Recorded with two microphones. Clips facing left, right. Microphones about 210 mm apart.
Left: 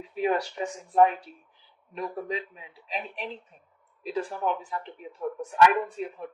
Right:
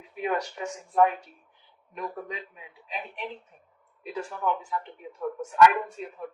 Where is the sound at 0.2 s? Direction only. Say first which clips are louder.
Left 3 dB; 30° left (ahead or behind).